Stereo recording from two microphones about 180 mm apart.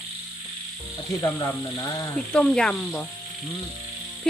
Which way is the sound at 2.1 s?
5° left (ahead or behind).